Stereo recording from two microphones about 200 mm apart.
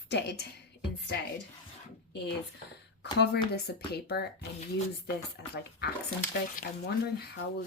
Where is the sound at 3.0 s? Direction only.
55° left (ahead or behind).